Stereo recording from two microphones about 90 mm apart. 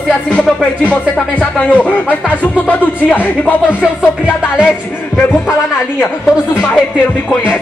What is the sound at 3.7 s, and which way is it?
Music, 10° right (ahead or behind).